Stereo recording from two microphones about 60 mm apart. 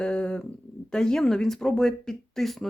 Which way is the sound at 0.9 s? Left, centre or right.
Centre.